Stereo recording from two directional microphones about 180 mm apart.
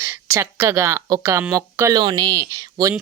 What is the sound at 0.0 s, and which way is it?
Speech, 15° right (ahead or behind).